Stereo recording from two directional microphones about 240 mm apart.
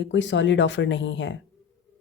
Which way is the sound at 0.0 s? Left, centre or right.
Left.